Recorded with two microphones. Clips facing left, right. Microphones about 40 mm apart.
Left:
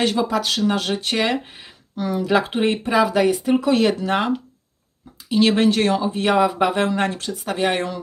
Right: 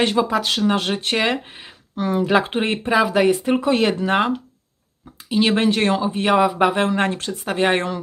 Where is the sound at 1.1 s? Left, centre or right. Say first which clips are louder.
Right 1 dB; centre.